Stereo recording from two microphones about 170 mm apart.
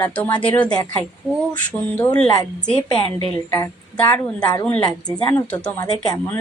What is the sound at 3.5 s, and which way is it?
Speech, 10° left (ahead or behind).